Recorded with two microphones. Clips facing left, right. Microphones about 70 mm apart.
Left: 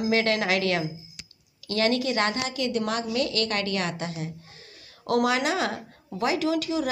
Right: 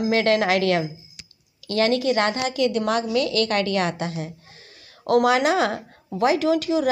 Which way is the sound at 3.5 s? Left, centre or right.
Right.